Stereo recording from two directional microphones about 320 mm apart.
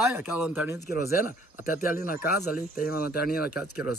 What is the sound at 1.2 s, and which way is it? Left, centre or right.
Speech, left.